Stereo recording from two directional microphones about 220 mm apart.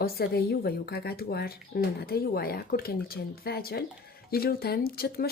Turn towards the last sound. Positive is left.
turn(degrees=45)  # may be behind; listen again after turning